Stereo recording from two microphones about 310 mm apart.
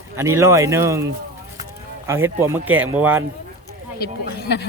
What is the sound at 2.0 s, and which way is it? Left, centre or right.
Speech, centre.